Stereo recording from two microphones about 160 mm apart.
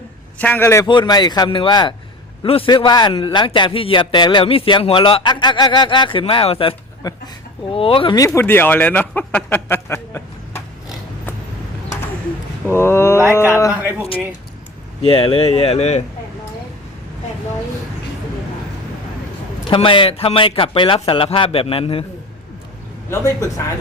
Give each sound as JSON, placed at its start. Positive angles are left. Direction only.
{"t": 0.3, "sound": "speech", "side_deg": 10}
{"t": 0.9, "sound": "a man's voice", "side_deg": 25}
{"t": 8.3, "sound": "speech", "side_deg": 15}
{"t": 12.6, "sound": "speech", "side_deg": 15}
{"t": 13.7, "sound": "speech", "side_deg": -15}
{"t": 15.0, "sound": "a man's voice", "side_deg": 35}
{"t": 19.7, "sound": "a man's voice", "side_deg": 30}
{"t": 23.4, "sound": "a man's voice", "side_deg": 20}